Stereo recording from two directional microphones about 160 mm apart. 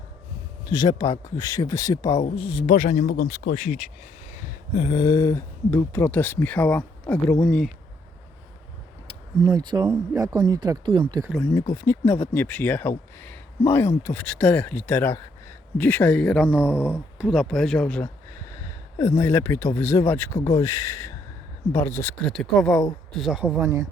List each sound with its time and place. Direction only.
0.6 s speech: 25° left (ahead or behind)
2.2 s speech: 35° left (ahead or behind)
2.7 s speech: 50° left (ahead or behind)
3.1 s speech: 60° left (ahead or behind)
4.8 s speech: 30° left (ahead or behind); by 7.7 s 5° left (ahead or behind)
9.0 s speech: 25° right (ahead or behind)
11.5 s speech: 20° left (ahead or behind)
16.4 s speech: 10° right (ahead or behind)
16.7 s speech: 15° left (ahead or behind)
17.2 s speech: centre (ahead or behind)
18.9 s speech: 20° left (ahead or behind)
22.2 s speech: centre (ahead or behind); by 23.8 s 15° right (ahead or behind)